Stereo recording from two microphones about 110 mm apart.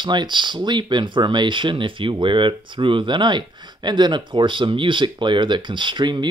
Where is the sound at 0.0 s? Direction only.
45° right (ahead or behind).